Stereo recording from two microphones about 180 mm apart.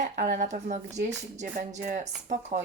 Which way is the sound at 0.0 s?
45° right (ahead or behind).